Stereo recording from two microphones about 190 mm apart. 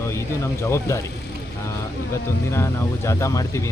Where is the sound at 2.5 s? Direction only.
15° left (ahead or behind).